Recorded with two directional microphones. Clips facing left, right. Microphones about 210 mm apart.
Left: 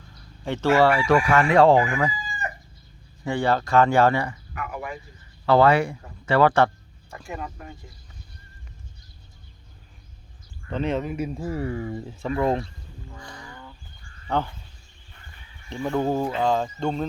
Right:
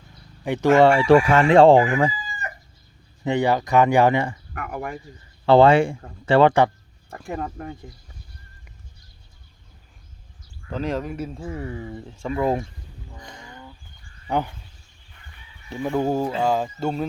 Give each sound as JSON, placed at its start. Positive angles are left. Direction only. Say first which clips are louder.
{"t": 0.4, "sound": "chicken", "louder": "right 4 dB", "side_deg": -15}
{"t": 3.2, "sound": "speech", "louder": "right 3 dB", "side_deg": -15}
{"t": 4.5, "sound": "a sound", "louder": "right 1 dB", "side_deg": -50}
{"t": 5.5, "sound": "chicken", "louder": "right 4 dB", "side_deg": -25}
{"t": 7.3, "sound": "speech", "louder": "right 5 dB", "side_deg": -50}
{"t": 10.7, "sound": "speech", "louder": "left 1 dB", "side_deg": 0}
{"t": 13.1, "sound": "a sound", "louder": "even", "side_deg": -20}
{"t": 14.3, "sound": "speech", "louder": "right 1 dB", "side_deg": -15}
{"t": 15.7, "sound": "speech", "louder": "right 1 dB", "side_deg": -10}